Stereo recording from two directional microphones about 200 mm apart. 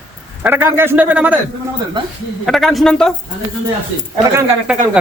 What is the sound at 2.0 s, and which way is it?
Speech, 25° right (ahead or behind).